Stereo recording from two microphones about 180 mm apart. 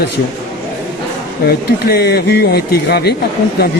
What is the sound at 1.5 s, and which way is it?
Speech, 60° left (ahead or behind).